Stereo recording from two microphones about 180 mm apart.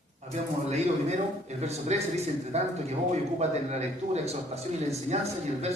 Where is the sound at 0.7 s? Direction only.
35° right (ahead or behind).